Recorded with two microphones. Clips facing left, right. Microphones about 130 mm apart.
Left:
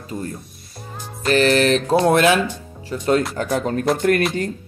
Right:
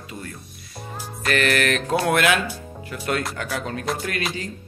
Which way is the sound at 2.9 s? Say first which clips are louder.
Left 7 dB; 30° left (ahead or behind).